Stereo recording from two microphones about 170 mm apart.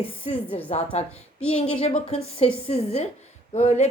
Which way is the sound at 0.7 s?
35° left (ahead or behind).